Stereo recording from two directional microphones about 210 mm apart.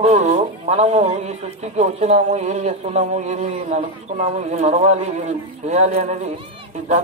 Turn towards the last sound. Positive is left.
turn(degrees=-35)  # may be behind; listen again after turning